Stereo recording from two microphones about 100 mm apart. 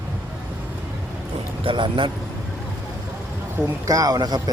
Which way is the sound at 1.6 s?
55° right (ahead or behind).